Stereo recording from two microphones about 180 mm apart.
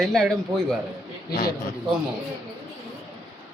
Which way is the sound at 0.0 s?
Centre (ahead or behind).